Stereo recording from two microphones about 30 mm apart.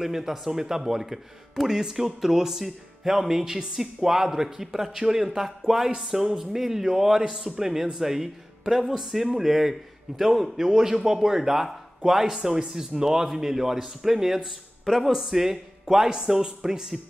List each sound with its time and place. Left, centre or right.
0.0 s speech: centre